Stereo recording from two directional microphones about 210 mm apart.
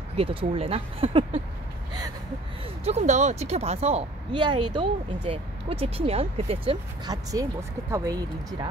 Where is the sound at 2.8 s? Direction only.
30° right (ahead or behind).